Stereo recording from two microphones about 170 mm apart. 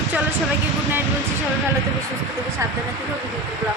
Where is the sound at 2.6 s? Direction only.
20° right (ahead or behind).